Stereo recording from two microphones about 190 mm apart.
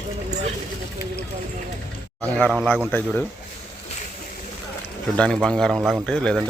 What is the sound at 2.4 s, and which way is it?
Speech, 5° left (ahead or behind).